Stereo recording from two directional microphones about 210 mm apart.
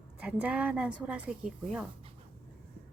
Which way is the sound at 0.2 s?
5° right (ahead or behind).